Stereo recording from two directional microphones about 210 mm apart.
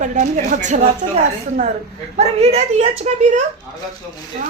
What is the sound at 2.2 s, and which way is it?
Speech, 30° right (ahead or behind).